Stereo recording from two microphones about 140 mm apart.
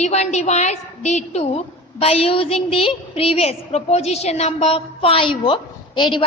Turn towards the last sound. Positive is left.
turn(degrees=35)  # may be behind; listen again after turning